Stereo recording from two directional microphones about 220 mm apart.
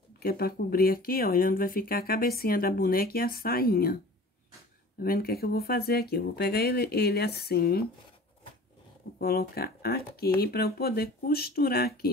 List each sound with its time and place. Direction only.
0.2 s speech: 45° left (ahead or behind)
5.0 s speech: 45° left (ahead or behind)
9.2 s speech: 45° left (ahead or behind)